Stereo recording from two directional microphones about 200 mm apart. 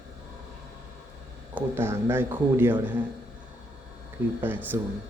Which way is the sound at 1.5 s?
10° right (ahead or behind).